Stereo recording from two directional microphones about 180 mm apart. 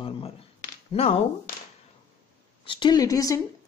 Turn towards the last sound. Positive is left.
turn(degrees=20)  # may be behind; listen again after turning